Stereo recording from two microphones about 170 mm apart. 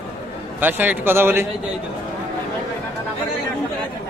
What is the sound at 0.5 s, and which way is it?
Speech, 10° right (ahead or behind).